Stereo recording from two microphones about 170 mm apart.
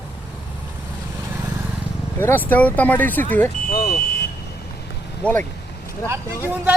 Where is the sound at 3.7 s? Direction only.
60° left (ahead or behind).